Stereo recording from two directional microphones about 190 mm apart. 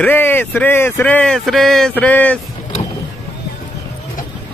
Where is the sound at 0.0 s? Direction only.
10° left (ahead or behind).